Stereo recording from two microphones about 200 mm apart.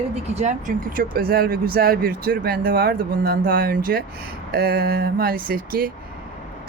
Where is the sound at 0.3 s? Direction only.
40° right (ahead or behind).